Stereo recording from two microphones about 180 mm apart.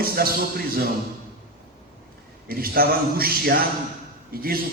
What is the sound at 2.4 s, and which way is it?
A man's voice, 55° right (ahead or behind).